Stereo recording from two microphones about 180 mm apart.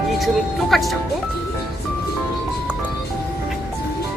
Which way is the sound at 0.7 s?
Centre (ahead or behind).